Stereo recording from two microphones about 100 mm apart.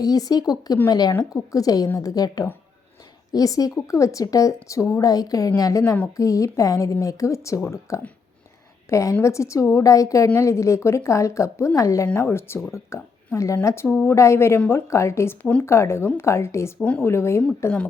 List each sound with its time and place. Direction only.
0.0 s a woman's voice: 40° left (ahead or behind)